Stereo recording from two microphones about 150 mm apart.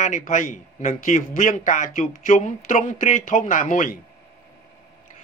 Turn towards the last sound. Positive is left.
turn(degrees=60)  # may be behind; listen again after turning